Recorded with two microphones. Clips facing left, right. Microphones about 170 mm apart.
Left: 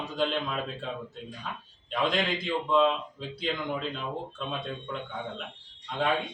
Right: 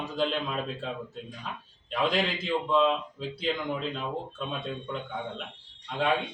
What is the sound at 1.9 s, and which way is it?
Speech, 5° right (ahead or behind).